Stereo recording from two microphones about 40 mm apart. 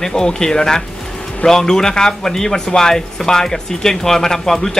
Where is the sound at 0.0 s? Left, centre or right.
Centre.